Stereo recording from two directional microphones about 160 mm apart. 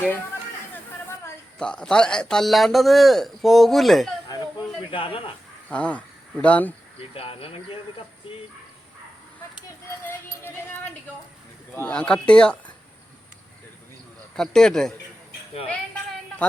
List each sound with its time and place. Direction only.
1.5 s a man's voice: 5° left (ahead or behind)
4.3 s a sound: 25° left (ahead or behind)
4.9 s speech: 35° left (ahead or behind)
5.6 s speech: 10° left (ahead or behind)
7.1 s speech: 35° left (ahead or behind)
11.7 s speech: 10° left (ahead or behind)
14.3 s a man's voice: 5° left (ahead or behind)